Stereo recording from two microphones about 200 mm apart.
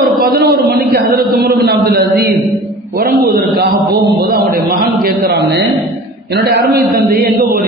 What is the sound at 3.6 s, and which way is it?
A man's voice, 50° right (ahead or behind).